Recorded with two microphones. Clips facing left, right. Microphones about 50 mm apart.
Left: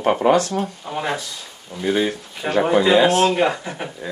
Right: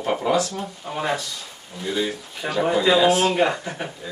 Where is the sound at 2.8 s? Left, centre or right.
Left.